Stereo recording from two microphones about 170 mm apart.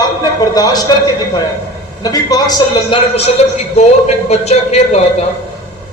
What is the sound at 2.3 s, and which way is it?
Speech, 25° left (ahead or behind).